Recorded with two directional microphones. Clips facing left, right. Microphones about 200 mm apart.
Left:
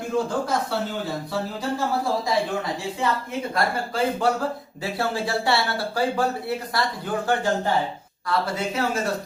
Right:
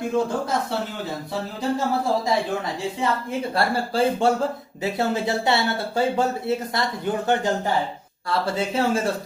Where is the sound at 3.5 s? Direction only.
30° right (ahead or behind).